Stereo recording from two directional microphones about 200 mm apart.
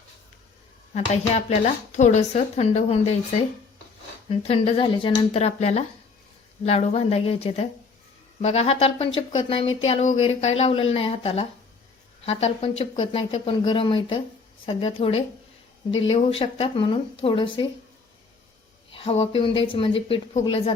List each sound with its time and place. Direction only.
0.9 s speech: 30° left (ahead or behind)
4.3 s speech: 30° left (ahead or behind)
18.9 s speech: 30° left (ahead or behind)